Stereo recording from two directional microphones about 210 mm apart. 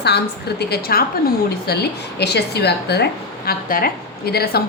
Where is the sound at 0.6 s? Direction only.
45° left (ahead or behind).